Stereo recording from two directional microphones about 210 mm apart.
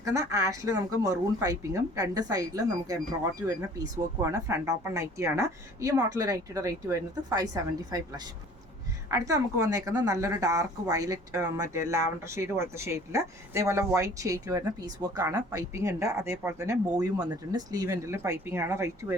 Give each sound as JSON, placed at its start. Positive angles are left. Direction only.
{"t": 0.0, "sound": "speech", "side_deg": -15}
{"t": 4.2, "sound": "speech", "side_deg": -15}